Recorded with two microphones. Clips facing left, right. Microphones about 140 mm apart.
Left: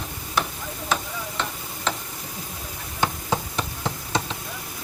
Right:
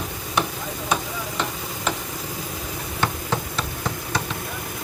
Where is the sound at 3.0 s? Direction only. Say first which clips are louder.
Left 1 dB; 15° left (ahead or behind).